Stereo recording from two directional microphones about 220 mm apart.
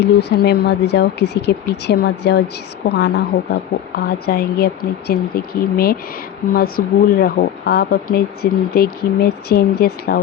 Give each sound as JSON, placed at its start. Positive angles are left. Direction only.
{"t": 0.3, "sound": "a woman's voice", "side_deg": 50}